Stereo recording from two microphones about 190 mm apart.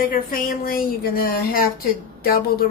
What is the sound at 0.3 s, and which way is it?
Speech, 45° left (ahead or behind).